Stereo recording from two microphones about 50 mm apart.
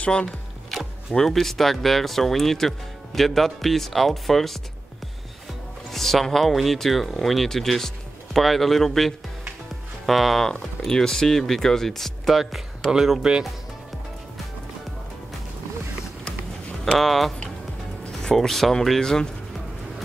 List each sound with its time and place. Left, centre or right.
0.0 s speech: centre
1.1 s speech: centre
5.9 s speech: centre
16.8 s speech: centre